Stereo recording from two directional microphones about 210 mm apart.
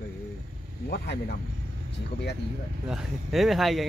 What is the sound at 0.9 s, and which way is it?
Speech, 50° left (ahead or behind).